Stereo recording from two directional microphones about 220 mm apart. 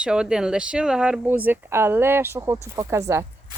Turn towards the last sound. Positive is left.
turn(degrees=-15)  # may be behind; listen again after turning